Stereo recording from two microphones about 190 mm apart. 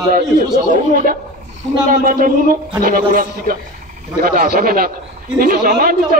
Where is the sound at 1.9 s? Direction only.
45° right (ahead or behind).